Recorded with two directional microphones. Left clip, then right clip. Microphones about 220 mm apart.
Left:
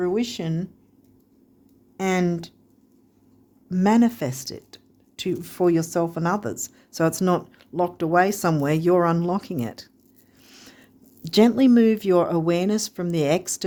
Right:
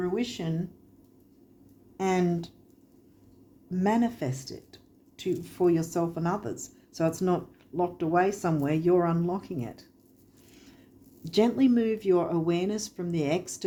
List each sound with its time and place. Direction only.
0.0 s speech: 50° left (ahead or behind)
2.0 s speech: 50° left (ahead or behind)
3.7 s speech: 50° left (ahead or behind)
10.5 s a sound: 50° left (ahead or behind)
11.3 s speech: 50° left (ahead or behind)